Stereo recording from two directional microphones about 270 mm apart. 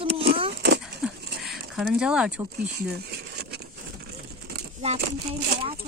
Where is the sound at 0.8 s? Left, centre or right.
Centre.